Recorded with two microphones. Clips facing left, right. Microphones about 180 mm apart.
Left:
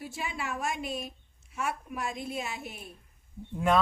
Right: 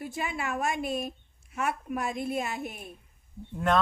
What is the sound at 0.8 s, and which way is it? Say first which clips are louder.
A woman's voice: right 5 dB; 50° right (ahead or behind).